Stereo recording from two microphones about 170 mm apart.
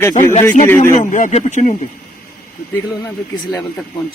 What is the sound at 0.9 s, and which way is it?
Speech, 45° left (ahead or behind).